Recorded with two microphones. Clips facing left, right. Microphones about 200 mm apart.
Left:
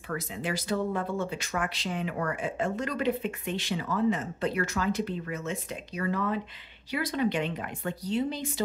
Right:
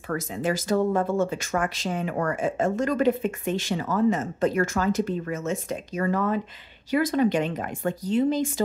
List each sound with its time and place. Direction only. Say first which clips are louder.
0.1 s speech: right 6 dB; 45° right (ahead or behind)